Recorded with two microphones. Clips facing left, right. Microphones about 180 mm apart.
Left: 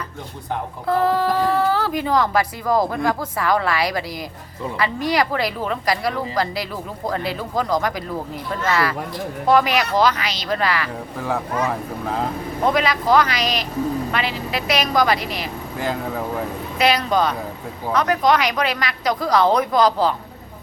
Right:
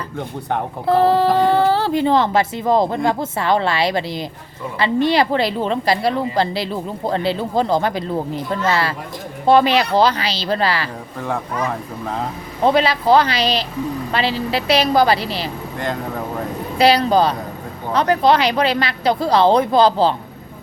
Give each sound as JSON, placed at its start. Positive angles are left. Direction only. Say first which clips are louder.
{"t": 0.9, "sound": "speech", "louder": "right 4 dB", "side_deg": -30}
{"t": 11.2, "sound": "speech", "louder": "even", "side_deg": 0}
{"t": 12.6, "sound": "speech", "louder": "right 4 dB", "side_deg": -30}
{"t": 15.8, "sound": "speech", "louder": "even", "side_deg": 5}
{"t": 16.7, "sound": "speech", "louder": "right 5 dB", "side_deg": -30}